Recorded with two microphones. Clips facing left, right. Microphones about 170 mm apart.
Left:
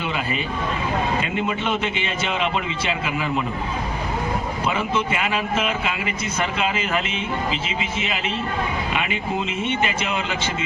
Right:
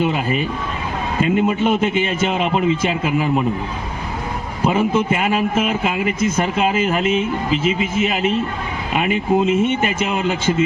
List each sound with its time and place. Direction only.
0.0 s a man's voice: 45° right (ahead or behind)
4.6 s a man's voice: 45° right (ahead or behind)